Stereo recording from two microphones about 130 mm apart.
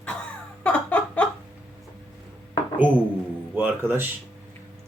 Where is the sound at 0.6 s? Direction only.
10° left (ahead or behind).